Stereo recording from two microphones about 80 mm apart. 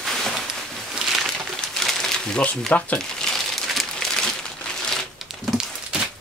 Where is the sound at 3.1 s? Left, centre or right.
Centre.